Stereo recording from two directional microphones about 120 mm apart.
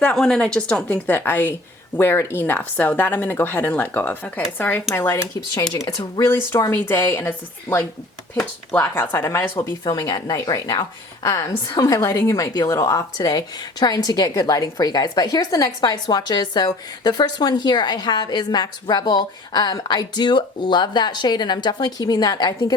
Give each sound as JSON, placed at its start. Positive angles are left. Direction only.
{"t": 0.0, "sound": "speech", "side_deg": 5}